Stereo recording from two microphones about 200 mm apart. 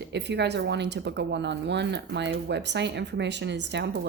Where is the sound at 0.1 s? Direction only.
60° right (ahead or behind).